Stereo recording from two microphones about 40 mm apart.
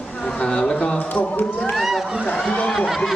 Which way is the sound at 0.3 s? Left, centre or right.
Left.